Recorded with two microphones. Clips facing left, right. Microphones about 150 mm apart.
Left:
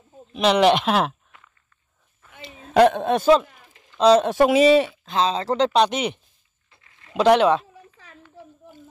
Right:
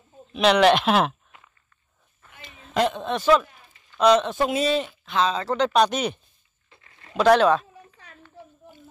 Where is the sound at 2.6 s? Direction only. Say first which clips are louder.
Left 8 dB; 65° left (ahead or behind).